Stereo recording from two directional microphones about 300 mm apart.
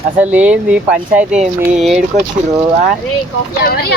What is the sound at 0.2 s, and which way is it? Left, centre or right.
Speech, centre.